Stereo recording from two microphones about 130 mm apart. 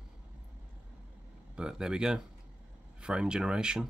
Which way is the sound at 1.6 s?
5° right (ahead or behind).